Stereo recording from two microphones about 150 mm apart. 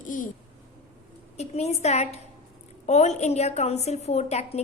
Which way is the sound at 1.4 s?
45° left (ahead or behind).